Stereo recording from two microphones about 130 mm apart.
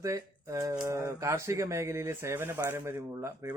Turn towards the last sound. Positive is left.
turn(degrees=-20)  # may be behind; listen again after turning